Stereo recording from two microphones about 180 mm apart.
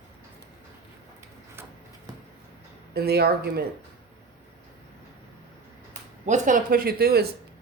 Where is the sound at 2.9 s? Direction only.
60° right (ahead or behind).